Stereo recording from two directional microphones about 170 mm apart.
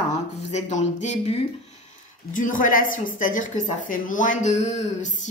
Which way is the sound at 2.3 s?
50° left (ahead or behind).